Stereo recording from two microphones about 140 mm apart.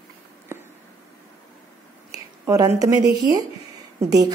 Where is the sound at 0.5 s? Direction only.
20° right (ahead or behind).